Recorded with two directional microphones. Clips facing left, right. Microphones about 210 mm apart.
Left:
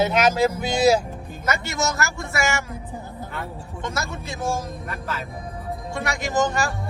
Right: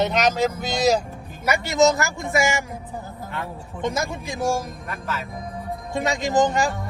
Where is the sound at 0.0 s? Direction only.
5° left (ahead or behind).